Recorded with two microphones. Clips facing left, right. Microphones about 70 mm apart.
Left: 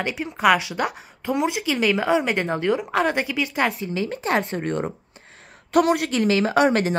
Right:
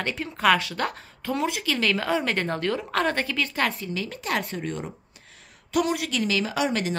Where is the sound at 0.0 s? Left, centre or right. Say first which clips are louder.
Left 3 dB; centre.